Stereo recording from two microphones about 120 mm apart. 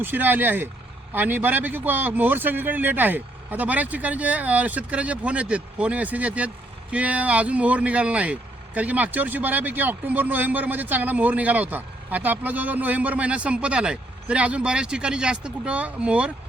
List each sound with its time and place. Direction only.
0.0 s speech: 15° right (ahead or behind)